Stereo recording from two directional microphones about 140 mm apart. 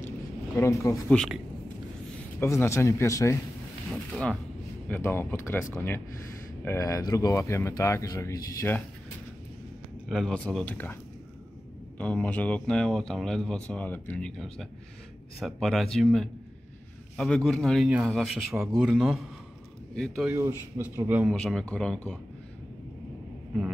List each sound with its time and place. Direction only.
0.6 s speech: 20° left (ahead or behind)
1.1 s speech: 5° left (ahead or behind)
2.4 s speech: 20° left (ahead or behind)
3.9 s speech: 5° left (ahead or behind)
10.0 s speech: 5° left (ahead or behind)
12.0 s speech: 10° left (ahead or behind)
20.2 s a man's voice: 20° right (ahead or behind)
21.3 s speech: 5° left (ahead or behind)